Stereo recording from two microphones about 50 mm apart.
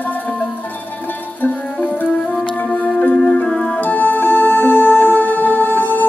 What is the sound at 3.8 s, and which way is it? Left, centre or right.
Music, left.